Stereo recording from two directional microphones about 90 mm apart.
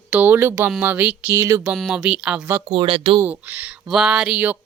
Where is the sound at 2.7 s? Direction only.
70° right (ahead or behind).